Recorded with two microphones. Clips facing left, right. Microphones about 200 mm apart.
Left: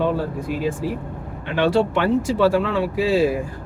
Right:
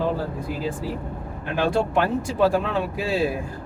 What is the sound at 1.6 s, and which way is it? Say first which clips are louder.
Speech: left 3 dB; 85° left.